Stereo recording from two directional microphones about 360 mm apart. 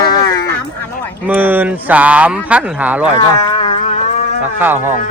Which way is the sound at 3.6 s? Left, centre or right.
Centre.